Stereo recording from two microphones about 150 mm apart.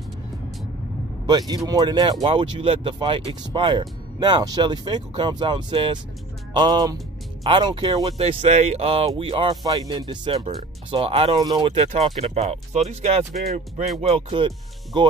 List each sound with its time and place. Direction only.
1.2 s speech: 30° right (ahead or behind)
11.3 s speech: 25° right (ahead or behind)
11.9 s speech: 45° right (ahead or behind)
13.4 s speech: 90° right
14.0 s speech: 40° right (ahead or behind)